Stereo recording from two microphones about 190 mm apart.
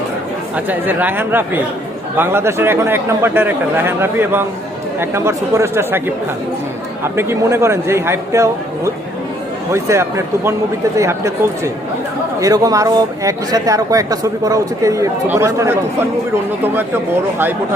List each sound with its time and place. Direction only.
0.5 s speech: 10° right (ahead or behind)